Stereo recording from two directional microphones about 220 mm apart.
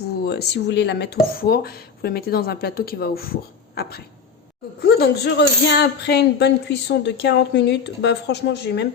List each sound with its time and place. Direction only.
0.3 s speech: 50° left (ahead or behind)